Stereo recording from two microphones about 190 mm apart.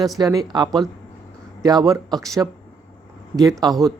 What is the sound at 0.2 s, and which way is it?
Speech, 20° right (ahead or behind).